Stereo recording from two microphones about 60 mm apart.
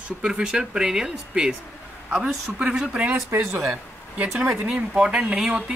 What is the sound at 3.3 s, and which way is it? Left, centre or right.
Speech, right.